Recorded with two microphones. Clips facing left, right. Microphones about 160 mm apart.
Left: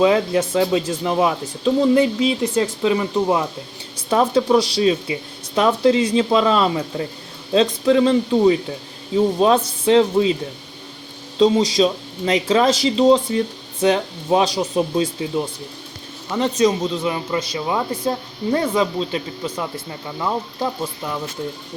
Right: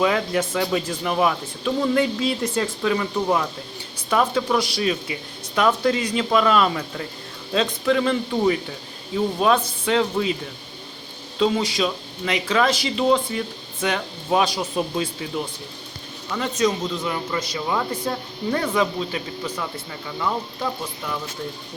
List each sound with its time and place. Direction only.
0.0 s speech: 25° left (ahead or behind)
11.3 s speech: 30° left (ahead or behind)